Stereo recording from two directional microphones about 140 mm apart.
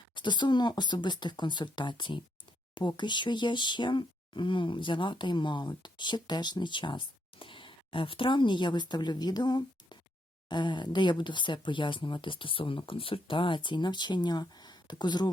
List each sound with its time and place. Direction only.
0.1 s speech: 35° left (ahead or behind)